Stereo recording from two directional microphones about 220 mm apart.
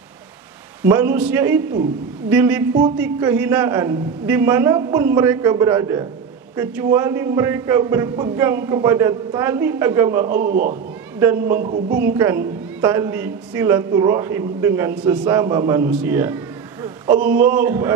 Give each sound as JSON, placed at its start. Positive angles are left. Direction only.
{"t": 0.8, "sound": "a woman's voice", "side_deg": -10}
{"t": 10.2, "sound": "a man's voice", "side_deg": -40}
{"t": 11.1, "sound": "a woman's voice", "side_deg": -10}
{"t": 11.6, "sound": "a man's voice", "side_deg": -40}
{"t": 12.1, "sound": "a woman's voice", "side_deg": -10}
{"t": 16.8, "sound": "a sound", "side_deg": -15}
{"t": 17.4, "sound": "a woman's voice", "side_deg": -10}